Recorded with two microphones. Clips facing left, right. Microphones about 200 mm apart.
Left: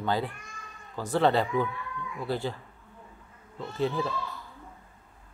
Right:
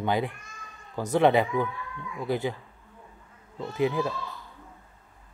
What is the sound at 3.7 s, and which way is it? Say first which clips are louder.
Speech: right 3 dB; 15° right (ahead or behind).